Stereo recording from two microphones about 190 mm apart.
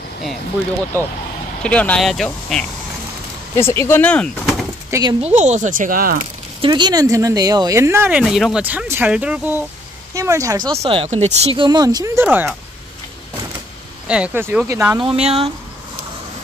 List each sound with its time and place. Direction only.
1.6 s speech: 5° left (ahead or behind)
3.5 s speech: 15° left (ahead or behind)
5.2 s speech: 40° right (ahead or behind)
6.6 s speech: 20° right (ahead or behind)
10.8 s speech: 30° right (ahead or behind); by 12.5 s 10° right (ahead or behind)
14.0 s speech: 5° right (ahead or behind)
15.0 s speech: 30° right (ahead or behind)